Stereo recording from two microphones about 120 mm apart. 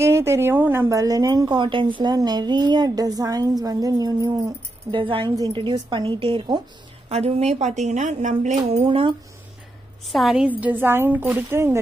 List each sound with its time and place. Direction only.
0.0 s a woman's voice: 20° right (ahead or behind)
4.9 s a woman's voice: 45° right (ahead or behind)
7.1 s speech: 60° right (ahead or behind)
8.8 s a woman's voice: 45° right (ahead or behind)
10.0 s a woman's voice: centre (ahead or behind); by 11.8 s 20° right (ahead or behind)